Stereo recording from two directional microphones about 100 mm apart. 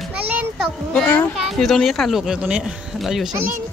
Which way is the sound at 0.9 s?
15° left (ahead or behind).